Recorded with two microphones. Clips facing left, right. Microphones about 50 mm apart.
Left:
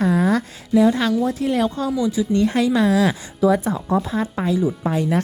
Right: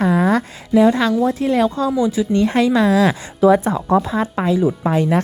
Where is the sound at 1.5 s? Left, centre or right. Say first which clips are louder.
Right 4 dB; right.